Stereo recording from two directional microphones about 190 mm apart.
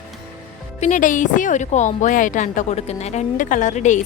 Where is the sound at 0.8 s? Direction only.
40° left (ahead or behind).